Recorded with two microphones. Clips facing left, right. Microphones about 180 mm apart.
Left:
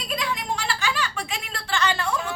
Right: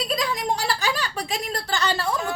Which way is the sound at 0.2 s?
40° right (ahead or behind).